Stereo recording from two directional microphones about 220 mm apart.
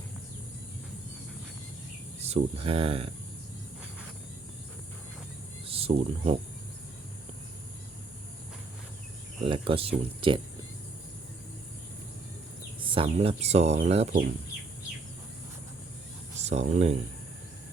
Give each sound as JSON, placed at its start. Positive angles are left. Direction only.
{"t": 2.2, "sound": "speech", "side_deg": -25}
{"t": 5.6, "sound": "speech", "side_deg": -25}
{"t": 9.4, "sound": "speech", "side_deg": -25}
{"t": 12.8, "sound": "speech", "side_deg": -25}
{"t": 16.4, "sound": "speech", "side_deg": -30}